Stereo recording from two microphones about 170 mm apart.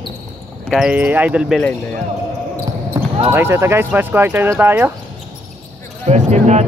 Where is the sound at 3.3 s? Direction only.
15° right (ahead or behind).